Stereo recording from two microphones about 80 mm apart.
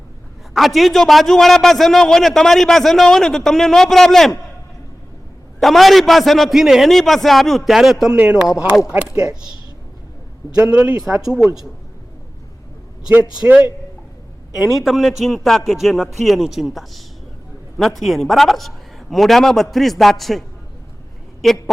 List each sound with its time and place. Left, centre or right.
0.5 s a man's voice: centre
5.5 s a man's voice: centre
10.7 s speech: right
11.0 s speech: centre
13.3 s a man's voice: centre
21.4 s a man's voice: centre